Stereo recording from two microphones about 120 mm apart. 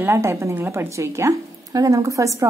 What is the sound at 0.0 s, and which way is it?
A woman's voice, 20° right (ahead or behind).